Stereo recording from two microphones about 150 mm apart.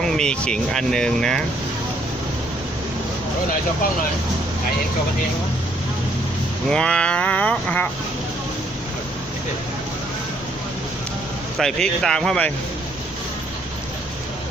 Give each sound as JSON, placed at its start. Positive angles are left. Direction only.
{"t": 0.0, "sound": "speech", "side_deg": 5}
{"t": 6.7, "sound": "a sound", "side_deg": 5}
{"t": 11.5, "sound": "speech", "side_deg": 5}